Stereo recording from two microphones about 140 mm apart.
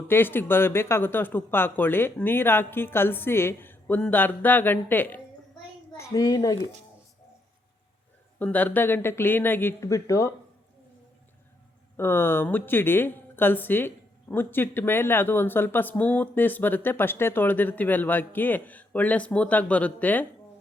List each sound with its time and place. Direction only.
0.1 s speech: 15° left (ahead or behind)
6.0 s a child's voice: 25° left (ahead or behind)
8.4 s speech: 10° left (ahead or behind)
11.9 s speech: 15° left (ahead or behind)